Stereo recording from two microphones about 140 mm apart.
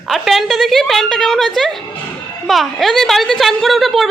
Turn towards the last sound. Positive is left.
turn(degrees=0)  # may be behind; listen again after turning